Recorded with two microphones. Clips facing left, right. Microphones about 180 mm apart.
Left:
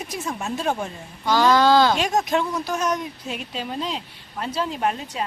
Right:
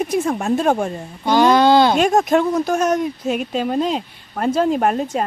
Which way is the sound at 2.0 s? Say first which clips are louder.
Right 7 dB; 50° right (ahead or behind).